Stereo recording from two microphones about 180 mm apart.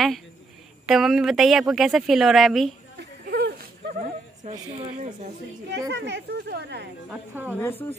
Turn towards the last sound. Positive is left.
turn(degrees=10)  # may be behind; listen again after turning